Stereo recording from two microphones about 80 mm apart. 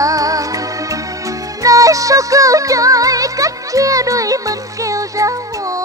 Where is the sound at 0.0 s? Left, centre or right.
Right.